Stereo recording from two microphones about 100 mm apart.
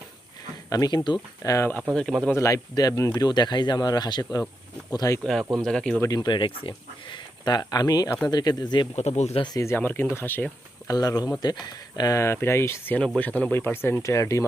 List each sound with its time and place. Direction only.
0.7 s speech: 40° left (ahead or behind)
1.4 s speech: 30° left (ahead or behind)
2.0 s speech: 5° left (ahead or behind)
2.3 s speech: 30° left (ahead or behind)
5.2 s speech: 5° left (ahead or behind)
6.1 s speech: 45° left (ahead or behind)
9.0 s speech: 90° left
9.6 s speech: 25° left (ahead or behind)
10.8 s speech: 40° left (ahead or behind)
13.0 s speech: 10° left (ahead or behind); by 14.4 s 30° left (ahead or behind)